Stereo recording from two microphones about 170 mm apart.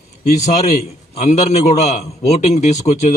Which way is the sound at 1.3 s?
40° left (ahead or behind).